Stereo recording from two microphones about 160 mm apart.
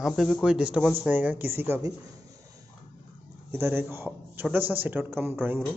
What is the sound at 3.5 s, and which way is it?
Speech, 15° right (ahead or behind).